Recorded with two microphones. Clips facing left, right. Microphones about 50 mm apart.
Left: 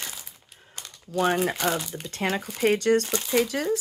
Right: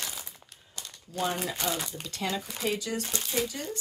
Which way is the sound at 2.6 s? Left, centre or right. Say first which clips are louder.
Left 13 dB; left.